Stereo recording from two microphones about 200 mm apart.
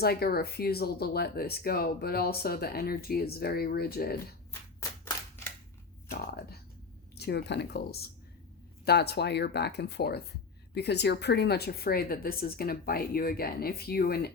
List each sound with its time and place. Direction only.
0.0 s speech: 50° left (ahead or behind)
4.8 s clapping: 15° left (ahead or behind)
6.1 s a sound: 50° left (ahead or behind)
7.2 s speech: 55° left (ahead or behind)